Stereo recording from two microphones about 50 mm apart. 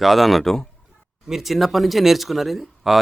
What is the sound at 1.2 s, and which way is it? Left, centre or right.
Speech, centre.